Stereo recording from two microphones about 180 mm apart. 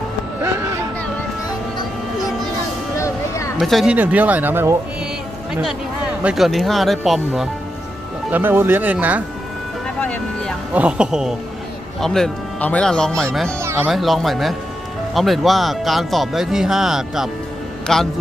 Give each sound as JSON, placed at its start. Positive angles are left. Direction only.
{"t": 3.0, "sound": "a sound", "side_deg": 15}
{"t": 3.6, "sound": "speech", "side_deg": 0}
{"t": 6.2, "sound": "speech", "side_deg": 0}
{"t": 8.3, "sound": "speech", "side_deg": -10}
{"t": 9.8, "sound": "vehicle", "side_deg": 5}
{"t": 10.8, "sound": "speech", "side_deg": -5}
{"t": 13.6, "sound": "speech", "side_deg": -15}
{"t": 13.9, "sound": "a man's voice", "side_deg": 0}